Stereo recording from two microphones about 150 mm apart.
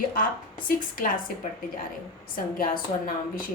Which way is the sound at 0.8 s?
65° left (ahead or behind).